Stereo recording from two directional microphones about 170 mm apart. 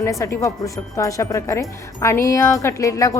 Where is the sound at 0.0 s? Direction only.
15° left (ahead or behind).